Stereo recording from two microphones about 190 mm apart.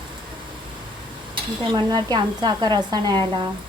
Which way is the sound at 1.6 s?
20° right (ahead or behind).